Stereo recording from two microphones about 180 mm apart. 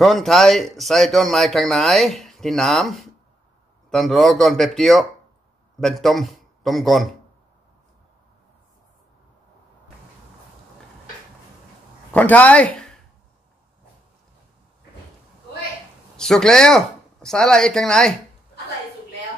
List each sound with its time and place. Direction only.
0.0 s speech: centre (ahead or behind)
12.1 s speech: 10° left (ahead or behind)
16.2 s speech: 5° left (ahead or behind)